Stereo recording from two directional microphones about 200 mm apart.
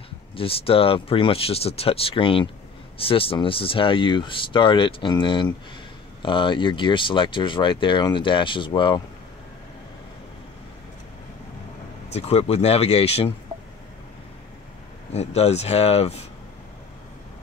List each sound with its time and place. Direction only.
0.4 s speech: 30° left (ahead or behind)
12.1 s speech: 30° left (ahead or behind)
15.1 s speech: 30° left (ahead or behind)